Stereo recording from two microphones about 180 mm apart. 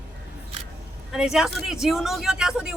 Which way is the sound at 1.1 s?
5° right (ahead or behind).